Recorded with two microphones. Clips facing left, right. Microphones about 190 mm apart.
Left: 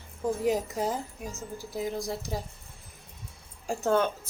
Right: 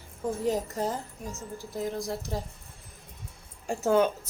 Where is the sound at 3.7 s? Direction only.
10° right (ahead or behind).